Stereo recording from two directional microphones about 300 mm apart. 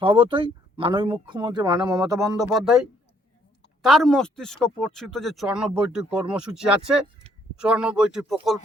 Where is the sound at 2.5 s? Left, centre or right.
Centre.